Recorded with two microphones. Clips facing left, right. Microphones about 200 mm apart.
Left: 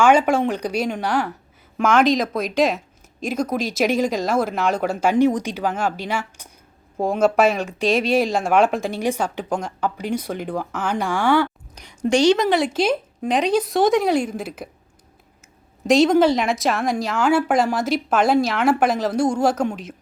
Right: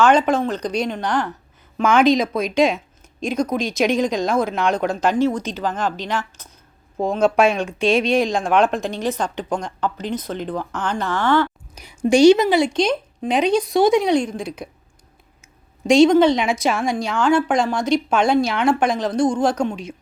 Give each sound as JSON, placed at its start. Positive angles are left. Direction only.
{"t": 0.0, "sound": "speech", "side_deg": 10}
{"t": 11.7, "sound": "speech", "side_deg": -10}
{"t": 15.9, "sound": "speech", "side_deg": 0}